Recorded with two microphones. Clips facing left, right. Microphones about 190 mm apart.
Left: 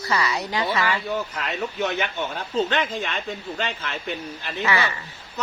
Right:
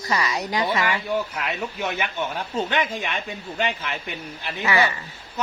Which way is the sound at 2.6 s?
15° right (ahead or behind).